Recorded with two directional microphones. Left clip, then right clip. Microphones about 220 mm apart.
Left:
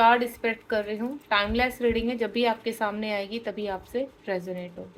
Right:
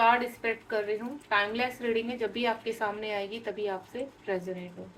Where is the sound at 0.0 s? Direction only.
50° left (ahead or behind).